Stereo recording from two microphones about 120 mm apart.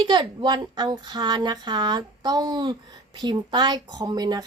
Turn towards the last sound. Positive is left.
turn(degrees=-35)  # may be behind; listen again after turning